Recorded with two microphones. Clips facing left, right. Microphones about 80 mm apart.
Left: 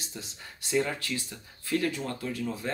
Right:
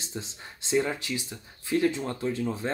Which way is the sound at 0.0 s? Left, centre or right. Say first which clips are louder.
Right 4 dB; right.